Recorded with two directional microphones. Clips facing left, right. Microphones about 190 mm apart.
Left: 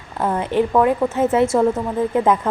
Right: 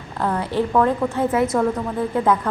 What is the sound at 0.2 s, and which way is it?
A woman's voice, 20° left (ahead or behind).